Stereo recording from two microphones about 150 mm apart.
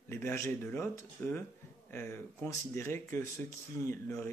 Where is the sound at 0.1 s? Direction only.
15° left (ahead or behind).